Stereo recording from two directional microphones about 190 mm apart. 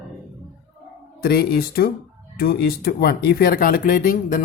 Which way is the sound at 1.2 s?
50° left (ahead or behind).